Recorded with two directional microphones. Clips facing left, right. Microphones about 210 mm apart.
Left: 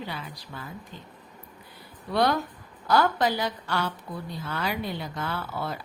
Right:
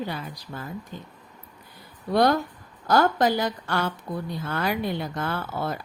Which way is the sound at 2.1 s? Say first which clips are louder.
Right 4 dB; 45° right (ahead or behind).